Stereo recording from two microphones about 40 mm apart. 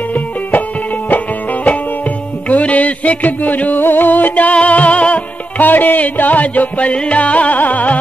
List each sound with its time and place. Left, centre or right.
1.1 s music: left
3.8 s music: left
5.6 s music: left